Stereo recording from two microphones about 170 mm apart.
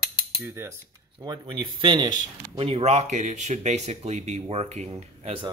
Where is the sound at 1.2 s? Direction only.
25° right (ahead or behind).